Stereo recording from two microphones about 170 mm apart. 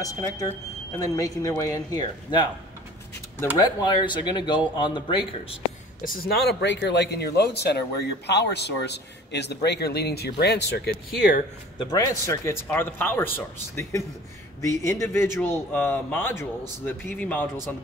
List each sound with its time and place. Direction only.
0.0 s speech: 20° left (ahead or behind)
3.5 s speech: 25° left (ahead or behind)
6.0 s a man's voice: 65° left (ahead or behind); by 11.0 s 80° left
11.1 s speech: 55° left (ahead or behind)
11.8 s speech: 20° left (ahead or behind)
14.6 s speech: 15° left (ahead or behind)